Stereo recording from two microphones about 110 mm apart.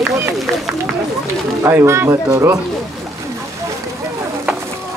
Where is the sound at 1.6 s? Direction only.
25° right (ahead or behind).